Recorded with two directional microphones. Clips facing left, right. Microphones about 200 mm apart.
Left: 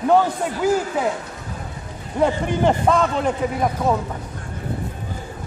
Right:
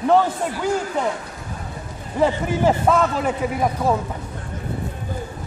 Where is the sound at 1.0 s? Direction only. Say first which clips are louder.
Left 1 dB; 5° left (ahead or behind).